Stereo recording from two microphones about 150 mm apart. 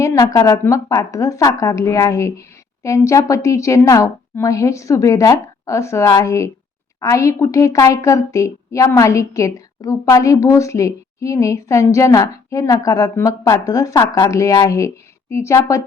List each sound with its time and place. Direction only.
0.0 s a woman's voice: 20° left (ahead or behind)